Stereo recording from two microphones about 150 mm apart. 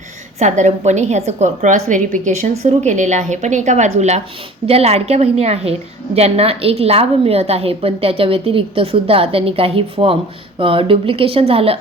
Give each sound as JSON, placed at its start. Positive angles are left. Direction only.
{"t": 0.3, "sound": "a woman's voice", "side_deg": -50}